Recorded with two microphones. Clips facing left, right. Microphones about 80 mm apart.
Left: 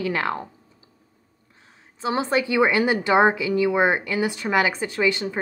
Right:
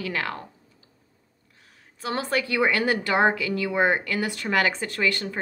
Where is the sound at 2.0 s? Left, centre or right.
Centre.